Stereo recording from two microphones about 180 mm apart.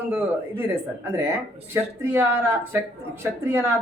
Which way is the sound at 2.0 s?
15° right (ahead or behind).